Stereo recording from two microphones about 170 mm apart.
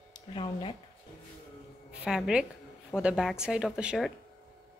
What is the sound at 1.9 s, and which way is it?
A woman's voice, 5° right (ahead or behind).